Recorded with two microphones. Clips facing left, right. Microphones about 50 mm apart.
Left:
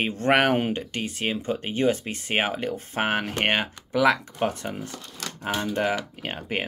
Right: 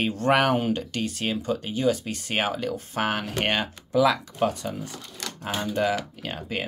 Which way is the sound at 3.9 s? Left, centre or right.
Left.